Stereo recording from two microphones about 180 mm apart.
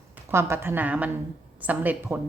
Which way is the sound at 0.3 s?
15° right (ahead or behind).